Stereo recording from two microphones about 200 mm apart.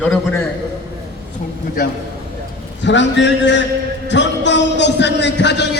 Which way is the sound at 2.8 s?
65° left (ahead or behind).